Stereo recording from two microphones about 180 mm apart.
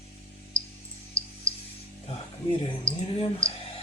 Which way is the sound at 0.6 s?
15° right (ahead or behind).